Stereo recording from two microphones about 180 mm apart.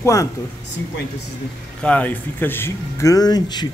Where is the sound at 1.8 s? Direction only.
10° left (ahead or behind).